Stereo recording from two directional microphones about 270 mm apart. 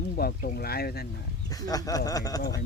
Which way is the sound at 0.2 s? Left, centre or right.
Left.